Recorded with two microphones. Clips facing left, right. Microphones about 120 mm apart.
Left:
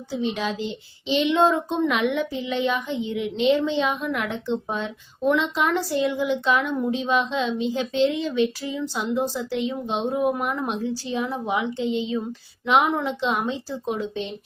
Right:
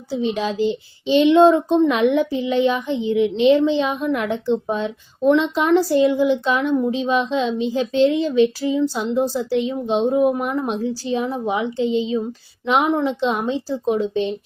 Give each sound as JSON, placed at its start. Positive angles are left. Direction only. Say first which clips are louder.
{"t": 0.1, "sound": "speech", "louder": "right 4 dB", "side_deg": -35}